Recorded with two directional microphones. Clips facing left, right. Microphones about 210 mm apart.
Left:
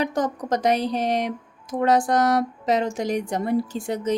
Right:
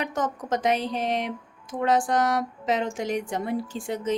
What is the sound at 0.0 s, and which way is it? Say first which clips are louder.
A woman's voice: left 4 dB; 35° left (ahead or behind).